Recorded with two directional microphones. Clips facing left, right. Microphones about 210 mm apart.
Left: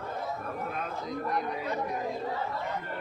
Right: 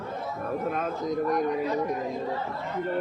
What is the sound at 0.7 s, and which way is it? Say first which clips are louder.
Speech: right 7 dB; 45° right (ahead or behind).